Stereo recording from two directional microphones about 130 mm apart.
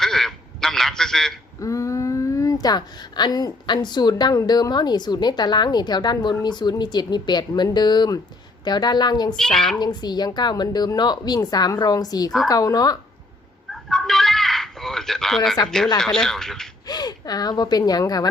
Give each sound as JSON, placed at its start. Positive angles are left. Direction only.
{"t": 0.0, "sound": "quack", "side_deg": 5}
{"t": 1.5, "sound": "speech", "side_deg": 25}
{"t": 9.3, "sound": "speech", "side_deg": 5}
{"t": 9.7, "sound": "speech", "side_deg": 35}
{"t": 13.7, "sound": "a sound", "side_deg": 0}
{"t": 16.0, "sound": "speech", "side_deg": 5}
{"t": 16.8, "sound": "speech", "side_deg": 30}